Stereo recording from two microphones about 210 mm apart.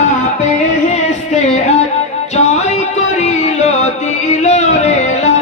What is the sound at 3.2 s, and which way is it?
Music, 30° left (ahead or behind).